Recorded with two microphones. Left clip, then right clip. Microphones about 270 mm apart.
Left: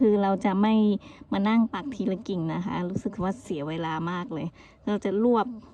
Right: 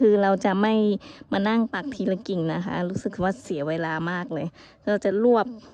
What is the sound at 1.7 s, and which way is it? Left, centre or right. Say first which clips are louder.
Speech: right 3 dB; right.